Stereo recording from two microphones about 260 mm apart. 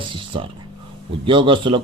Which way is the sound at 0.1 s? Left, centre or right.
Centre.